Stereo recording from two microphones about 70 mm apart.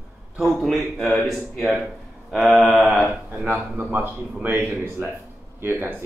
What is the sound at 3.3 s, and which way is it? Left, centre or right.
Speech, right.